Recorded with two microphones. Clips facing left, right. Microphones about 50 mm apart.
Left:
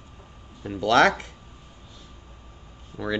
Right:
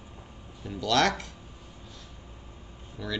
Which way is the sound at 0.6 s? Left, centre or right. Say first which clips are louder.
Left 6 dB; left.